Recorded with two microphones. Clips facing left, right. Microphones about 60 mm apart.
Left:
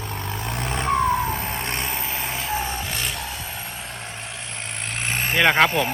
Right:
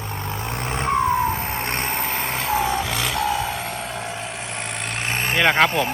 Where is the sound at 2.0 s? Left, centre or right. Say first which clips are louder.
Right 4 dB; right.